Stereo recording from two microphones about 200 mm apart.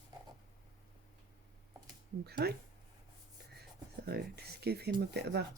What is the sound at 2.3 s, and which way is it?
Speech, 55° right (ahead or behind).